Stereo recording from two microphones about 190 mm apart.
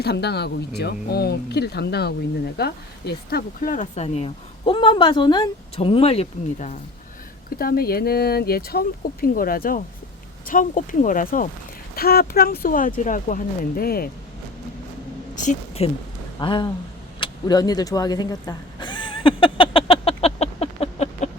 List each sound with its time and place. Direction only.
0.0 s speech: 60° left (ahead or behind); by 6.7 s 35° left (ahead or behind)
7.6 s speech: 50° left (ahead or behind)
15.4 s a woman's voice: 30° left (ahead or behind)
17.2 s vehicle: 25° left (ahead or behind)